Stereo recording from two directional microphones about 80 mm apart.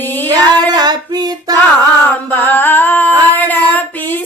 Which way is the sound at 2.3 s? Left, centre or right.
Left.